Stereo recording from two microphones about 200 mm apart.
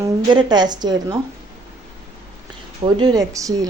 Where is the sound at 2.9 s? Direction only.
20° right (ahead or behind).